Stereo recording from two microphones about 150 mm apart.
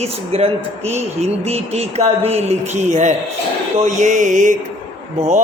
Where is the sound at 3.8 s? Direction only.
55° right (ahead or behind).